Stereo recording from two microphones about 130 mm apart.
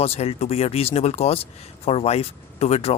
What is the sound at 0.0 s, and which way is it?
Speech, 50° left (ahead or behind).